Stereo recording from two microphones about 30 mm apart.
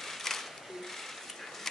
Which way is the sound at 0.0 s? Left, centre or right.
Centre.